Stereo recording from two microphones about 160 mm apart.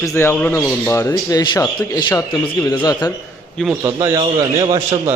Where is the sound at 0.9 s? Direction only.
20° left (ahead or behind).